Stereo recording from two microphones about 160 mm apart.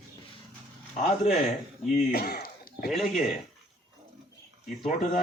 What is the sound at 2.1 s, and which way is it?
Throat clearing, 70° left (ahead or behind).